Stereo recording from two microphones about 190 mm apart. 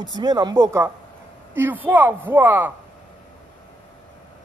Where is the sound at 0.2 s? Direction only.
20° right (ahead or behind).